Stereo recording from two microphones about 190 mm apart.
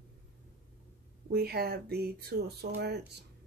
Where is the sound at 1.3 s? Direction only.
55° right (ahead or behind).